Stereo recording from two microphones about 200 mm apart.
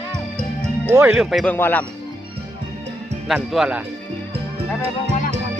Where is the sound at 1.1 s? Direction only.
Centre (ahead or behind).